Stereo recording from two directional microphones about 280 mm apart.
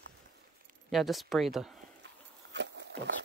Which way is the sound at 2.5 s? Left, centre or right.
Right.